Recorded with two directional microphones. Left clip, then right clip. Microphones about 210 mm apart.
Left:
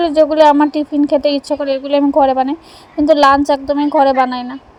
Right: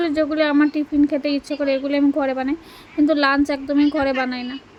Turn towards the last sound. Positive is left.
turn(degrees=15)  # may be behind; listen again after turning